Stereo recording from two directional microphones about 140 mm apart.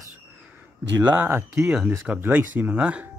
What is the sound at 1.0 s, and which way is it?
Speech, 15° right (ahead or behind).